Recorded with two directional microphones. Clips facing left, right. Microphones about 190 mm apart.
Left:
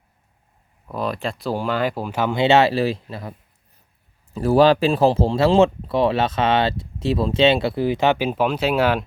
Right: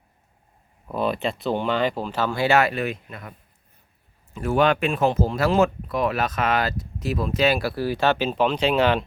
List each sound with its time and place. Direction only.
0.9 s speech: centre (ahead or behind); by 3.3 s 30° left (ahead or behind)
4.4 s speech: 35° left (ahead or behind); by 9.0 s 10° left (ahead or behind)